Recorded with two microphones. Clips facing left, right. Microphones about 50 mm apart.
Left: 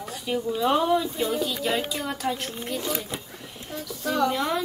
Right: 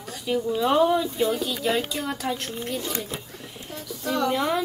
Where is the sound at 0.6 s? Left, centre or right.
Centre.